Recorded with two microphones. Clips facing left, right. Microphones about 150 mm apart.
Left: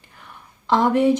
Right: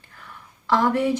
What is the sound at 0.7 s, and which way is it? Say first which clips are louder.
Speech: left 3 dB; 20° left (ahead or behind).